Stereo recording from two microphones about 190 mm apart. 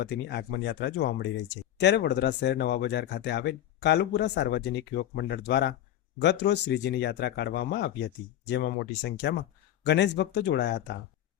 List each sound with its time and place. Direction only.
0.0 s speech: 60° left (ahead or behind)